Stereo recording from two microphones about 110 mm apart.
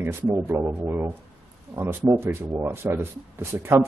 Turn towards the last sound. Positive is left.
turn(degrees=-20)  # may be behind; listen again after turning